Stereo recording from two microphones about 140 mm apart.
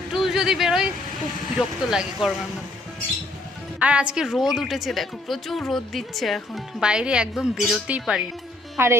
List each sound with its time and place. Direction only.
0.1 s a sound: centre (ahead or behind)
1.5 s a woman's voice: 5° right (ahead or behind)
3.8 s a woman's voice: 10° right (ahead or behind)